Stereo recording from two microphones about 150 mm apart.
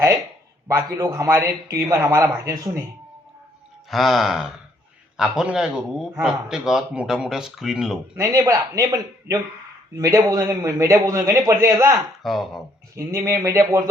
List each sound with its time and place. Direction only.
0.7 s a man's voice: 20° right (ahead or behind)
3.8 s speech: centre (ahead or behind)
8.1 s a man's voice: 20° right (ahead or behind)
12.2 s speech: centre (ahead or behind)
13.0 s a man's voice: 20° right (ahead or behind)